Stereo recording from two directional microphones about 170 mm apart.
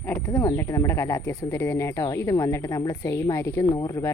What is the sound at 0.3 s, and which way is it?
Speech, 20° left (ahead or behind).